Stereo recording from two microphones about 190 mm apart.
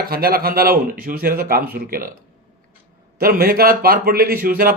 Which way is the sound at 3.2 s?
50° right (ahead or behind).